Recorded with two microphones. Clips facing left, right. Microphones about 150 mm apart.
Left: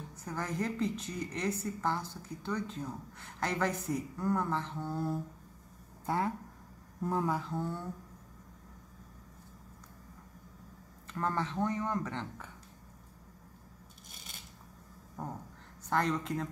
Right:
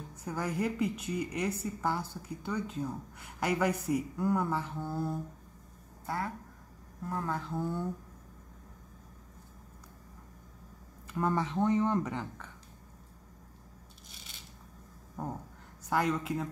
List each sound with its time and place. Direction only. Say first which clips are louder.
0.2 s a woman's voice: right 3 dB; 10° right (ahead or behind)
6.0 s speech: left 3 dB; 20° left (ahead or behind)
7.3 s speech: right 1 dB; 5° right (ahead or behind)
11.1 s a woman's voice: right 3 dB; 10° right (ahead or behind)
15.9 s a woman's voice: right 1 dB; 5° right (ahead or behind)